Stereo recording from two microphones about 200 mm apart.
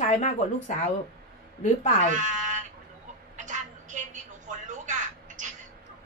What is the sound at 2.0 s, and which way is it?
Speech, 40° right (ahead or behind).